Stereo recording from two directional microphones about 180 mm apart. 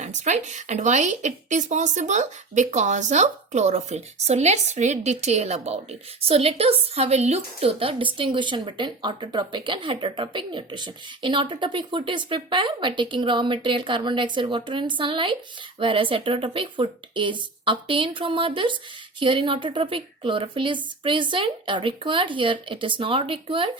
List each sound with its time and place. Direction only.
0.0 s a woman's voice: 40° right (ahead or behind)